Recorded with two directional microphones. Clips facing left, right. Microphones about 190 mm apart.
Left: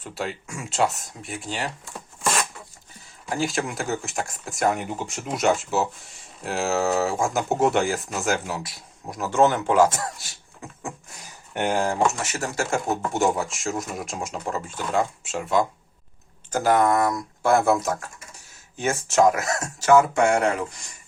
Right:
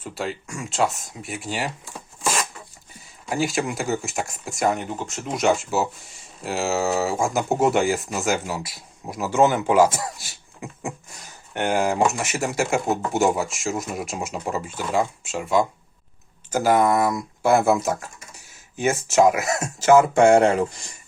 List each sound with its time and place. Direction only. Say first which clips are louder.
0.0 s speech: right 2 dB; centre (ahead or behind)
11.5 s speech: right 2 dB; centre (ahead or behind); by 20.7 s 30° right (ahead or behind)